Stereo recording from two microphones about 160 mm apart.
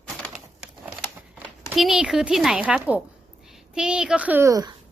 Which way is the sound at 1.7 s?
Centre (ahead or behind).